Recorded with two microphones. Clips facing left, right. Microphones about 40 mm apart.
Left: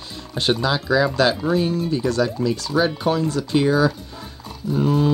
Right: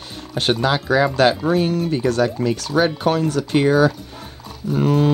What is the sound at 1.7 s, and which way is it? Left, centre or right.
Speech, right.